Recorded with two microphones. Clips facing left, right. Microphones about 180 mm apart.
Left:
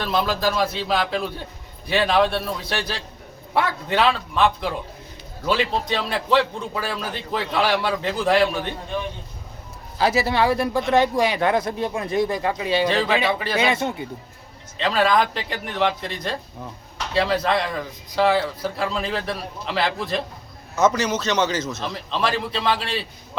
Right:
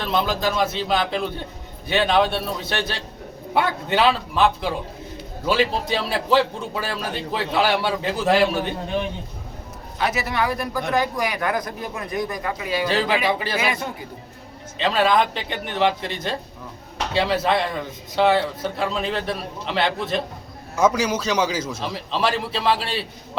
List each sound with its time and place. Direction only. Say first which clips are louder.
0.0 s a man's voice: even; centre (ahead or behind)
10.0 s speech: left 4 dB; 30° left (ahead or behind)
13.2 s a man's voice: even; centre (ahead or behind)
13.6 s speech: left 4 dB; 25° left (ahead or behind)
14.8 s a man's voice: even; centre (ahead or behind)